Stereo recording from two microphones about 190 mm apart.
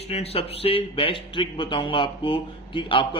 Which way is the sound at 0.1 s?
30° left (ahead or behind).